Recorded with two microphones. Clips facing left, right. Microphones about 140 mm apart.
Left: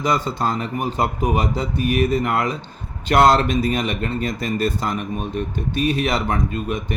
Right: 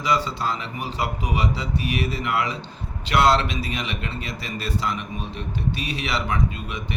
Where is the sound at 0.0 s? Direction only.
50° left (ahead or behind).